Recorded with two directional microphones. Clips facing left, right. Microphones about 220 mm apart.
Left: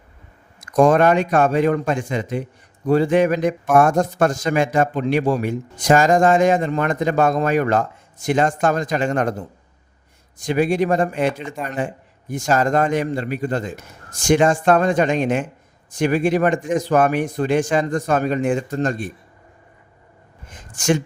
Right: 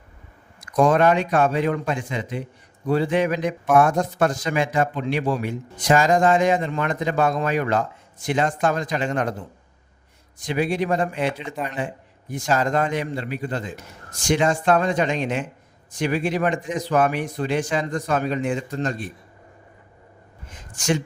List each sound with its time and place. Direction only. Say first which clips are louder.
0.6 s a man's voice: left 3 dB; 45° left (ahead or behind)
10.3 s a man's voice: left 5 dB; 45° left (ahead or behind)
20.7 s a man's voice: left 4 dB; 50° left (ahead or behind)